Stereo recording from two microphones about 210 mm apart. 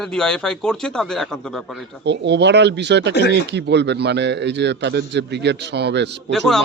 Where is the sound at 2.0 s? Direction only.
55° right (ahead or behind).